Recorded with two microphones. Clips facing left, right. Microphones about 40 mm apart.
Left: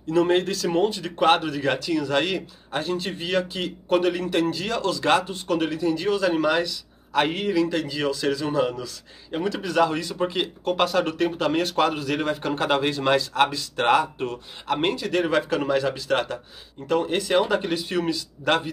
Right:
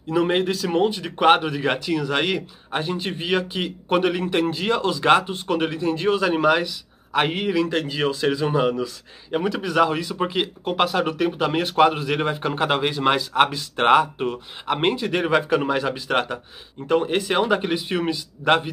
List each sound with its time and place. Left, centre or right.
0.1 s a man's voice: centre